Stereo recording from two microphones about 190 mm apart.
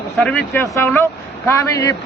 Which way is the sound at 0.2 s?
5° left (ahead or behind).